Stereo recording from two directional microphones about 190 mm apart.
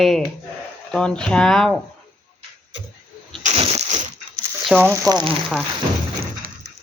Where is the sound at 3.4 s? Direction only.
35° right (ahead or behind).